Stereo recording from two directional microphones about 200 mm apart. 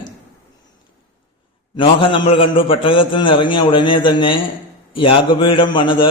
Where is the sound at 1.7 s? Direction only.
25° left (ahead or behind).